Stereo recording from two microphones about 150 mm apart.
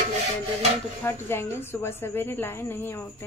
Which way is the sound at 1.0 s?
15° left (ahead or behind).